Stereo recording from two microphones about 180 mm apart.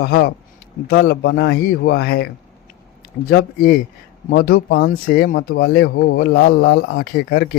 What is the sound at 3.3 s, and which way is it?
Speech, 55° left (ahead or behind).